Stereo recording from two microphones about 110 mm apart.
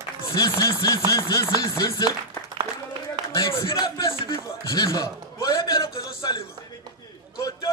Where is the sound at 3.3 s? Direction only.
40° left (ahead or behind).